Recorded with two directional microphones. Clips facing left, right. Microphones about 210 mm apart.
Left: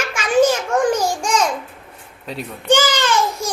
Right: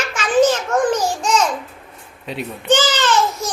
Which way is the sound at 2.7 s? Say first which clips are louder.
Even; 10° left (ahead or behind).